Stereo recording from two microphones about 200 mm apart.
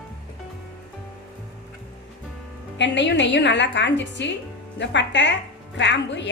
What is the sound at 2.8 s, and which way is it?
A woman's voice, 60° left (ahead or behind).